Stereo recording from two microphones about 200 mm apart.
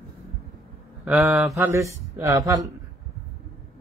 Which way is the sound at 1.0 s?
5° right (ahead or behind).